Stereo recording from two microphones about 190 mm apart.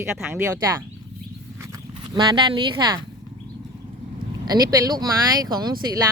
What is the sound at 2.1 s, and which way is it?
Speech, 25° right (ahead or behind).